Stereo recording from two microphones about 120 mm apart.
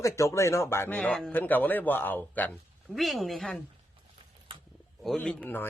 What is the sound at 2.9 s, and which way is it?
Speech, centre (ahead or behind).